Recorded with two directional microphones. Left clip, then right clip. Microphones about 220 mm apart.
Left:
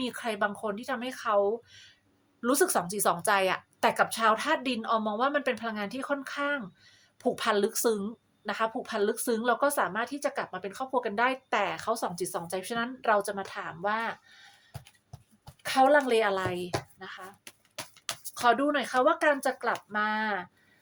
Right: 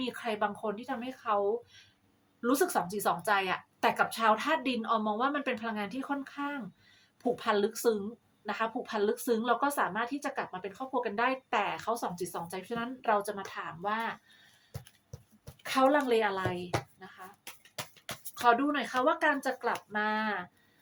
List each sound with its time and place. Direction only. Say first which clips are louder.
0.0 s speech: left 2 dB; 45° left (ahead or behind)
15.6 s speech: left 4 dB; 40° left (ahead or behind)
18.3 s speech: left 2 dB; 45° left (ahead or behind)